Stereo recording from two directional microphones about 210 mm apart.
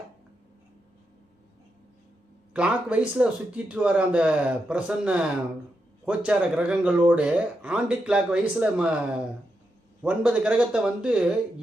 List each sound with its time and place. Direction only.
2.5 s speech: 5° right (ahead or behind)